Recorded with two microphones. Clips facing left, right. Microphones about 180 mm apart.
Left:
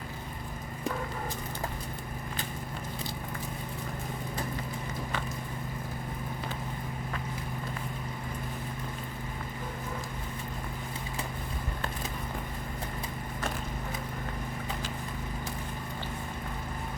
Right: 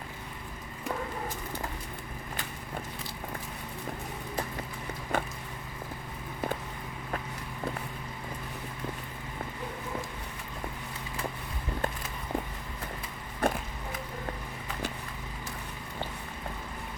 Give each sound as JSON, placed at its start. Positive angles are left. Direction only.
{"t": 5.1, "sound": "vehicle", "side_deg": -50}
{"t": 13.4, "sound": "skateboard", "side_deg": -60}